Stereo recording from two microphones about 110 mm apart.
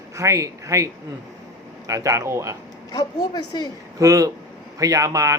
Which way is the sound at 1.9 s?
30° right (ahead or behind).